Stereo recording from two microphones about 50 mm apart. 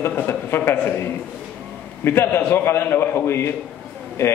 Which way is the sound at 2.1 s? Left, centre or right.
Left.